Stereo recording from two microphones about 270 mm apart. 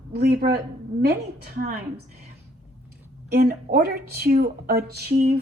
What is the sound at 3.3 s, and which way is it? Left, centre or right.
Speech, right.